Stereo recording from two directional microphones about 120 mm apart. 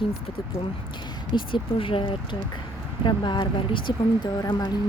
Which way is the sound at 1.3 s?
45° left (ahead or behind).